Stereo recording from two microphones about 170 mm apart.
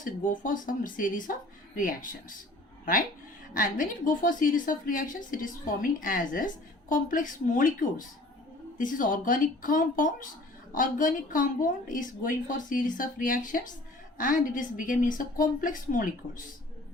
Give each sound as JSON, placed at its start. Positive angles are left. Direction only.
{"t": 0.0, "sound": "a woman's voice", "side_deg": 55}
{"t": 3.5, "sound": "a woman's voice", "side_deg": 50}